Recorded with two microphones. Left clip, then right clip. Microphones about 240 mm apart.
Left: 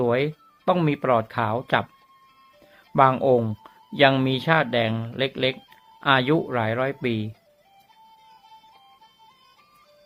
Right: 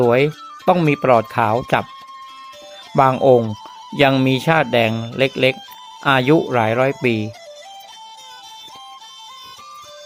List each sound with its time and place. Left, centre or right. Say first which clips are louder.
0.0 s speech: right 8 dB; right
2.9 s speech: right 5 dB; right